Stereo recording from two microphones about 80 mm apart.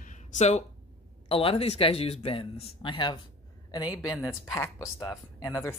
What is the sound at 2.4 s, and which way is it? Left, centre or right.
Speech, left.